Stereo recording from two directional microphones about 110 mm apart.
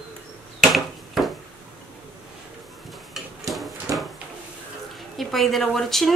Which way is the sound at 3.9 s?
30° right (ahead or behind).